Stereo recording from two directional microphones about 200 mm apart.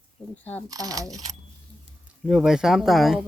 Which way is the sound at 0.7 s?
20° right (ahead or behind).